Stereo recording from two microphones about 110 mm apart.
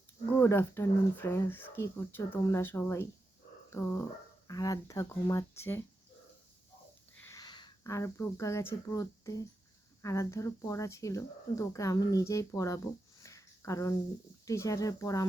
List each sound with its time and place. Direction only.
0.3 s speech: 20° left (ahead or behind)
7.3 s a sound: 40° left (ahead or behind)
7.9 s speech: 25° left (ahead or behind)